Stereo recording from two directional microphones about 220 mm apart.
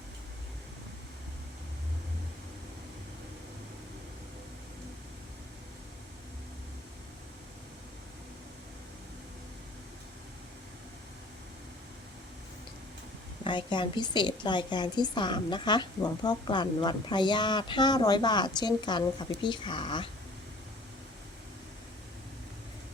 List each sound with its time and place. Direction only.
13.4 s a woman's voice: 20° left (ahead or behind)